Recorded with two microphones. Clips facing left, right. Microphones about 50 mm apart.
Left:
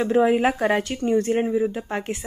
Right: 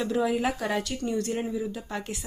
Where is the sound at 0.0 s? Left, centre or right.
Left.